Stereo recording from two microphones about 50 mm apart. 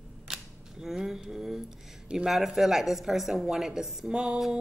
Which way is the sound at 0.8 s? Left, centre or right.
Centre.